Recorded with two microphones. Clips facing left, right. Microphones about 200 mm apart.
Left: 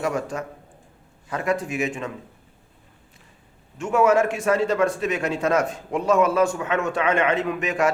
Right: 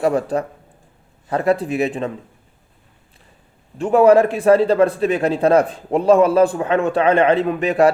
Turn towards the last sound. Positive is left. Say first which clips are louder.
# right 7 dB
turn(degrees=-35)  # may be behind; listen again after turning